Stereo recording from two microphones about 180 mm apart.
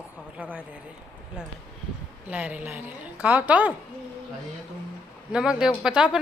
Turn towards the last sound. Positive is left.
turn(degrees=-5)  # may be behind; listen again after turning